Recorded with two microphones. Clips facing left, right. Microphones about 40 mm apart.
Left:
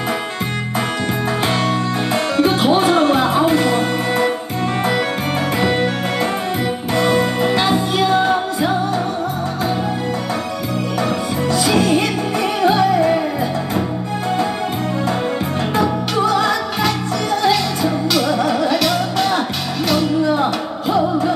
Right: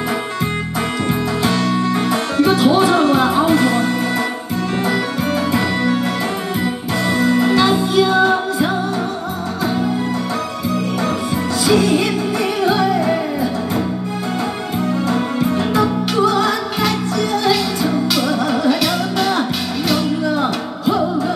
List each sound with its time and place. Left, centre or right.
1.4 s music: left
5.5 s music: left
7.7 s music: left
11.6 s music: left
16.3 s music: left
17.5 s music: centre
20.3 s music: left